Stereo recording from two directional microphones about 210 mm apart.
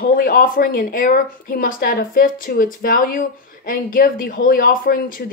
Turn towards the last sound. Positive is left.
turn(degrees=40)  # may be behind; listen again after turning